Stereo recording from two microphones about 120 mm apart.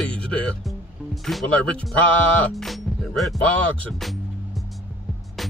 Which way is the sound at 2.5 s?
Centre (ahead or behind).